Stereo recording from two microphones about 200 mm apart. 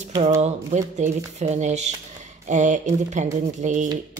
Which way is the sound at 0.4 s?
35° right (ahead or behind).